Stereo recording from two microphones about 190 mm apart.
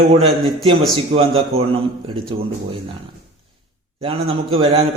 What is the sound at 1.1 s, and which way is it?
Speech, 30° right (ahead or behind).